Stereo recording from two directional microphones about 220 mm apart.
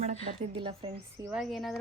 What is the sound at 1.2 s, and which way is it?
Speech, 5° right (ahead or behind).